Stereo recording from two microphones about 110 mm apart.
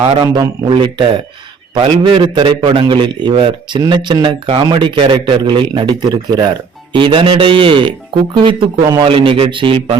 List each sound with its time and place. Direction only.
0.2 s a man's voice: 45° right (ahead or behind)
4.4 s a man's voice: 55° right (ahead or behind)
9.0 s a man's voice: 55° right (ahead or behind)